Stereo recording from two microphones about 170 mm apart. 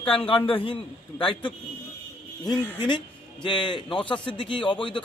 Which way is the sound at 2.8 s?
30° left (ahead or behind).